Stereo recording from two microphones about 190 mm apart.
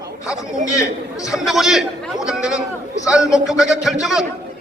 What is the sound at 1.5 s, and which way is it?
A man's voice, centre (ahead or behind).